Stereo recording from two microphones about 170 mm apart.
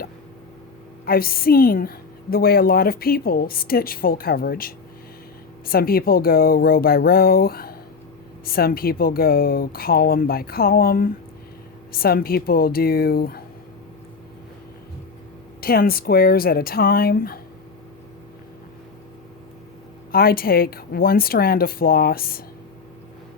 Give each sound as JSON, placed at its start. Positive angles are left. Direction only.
{"t": 1.0, "sound": "a woman's voice", "side_deg": 60}
{"t": 15.6, "sound": "a woman's voice", "side_deg": 60}
{"t": 20.1, "sound": "a woman's voice", "side_deg": 60}